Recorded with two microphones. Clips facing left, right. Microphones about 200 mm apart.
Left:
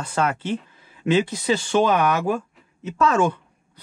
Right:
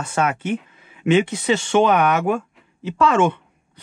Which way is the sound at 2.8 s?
30° right (ahead or behind).